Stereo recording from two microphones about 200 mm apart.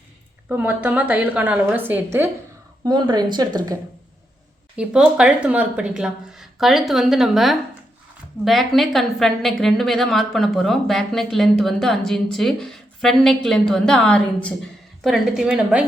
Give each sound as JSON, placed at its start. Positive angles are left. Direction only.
{"t": 0.4, "sound": "a woman's voice", "side_deg": -10}
{"t": 2.8, "sound": "speech", "side_deg": -20}
{"t": 4.8, "sound": "a woman's voice", "side_deg": -5}